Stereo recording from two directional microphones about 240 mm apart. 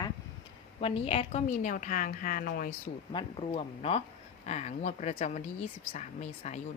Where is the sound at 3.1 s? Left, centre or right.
Left.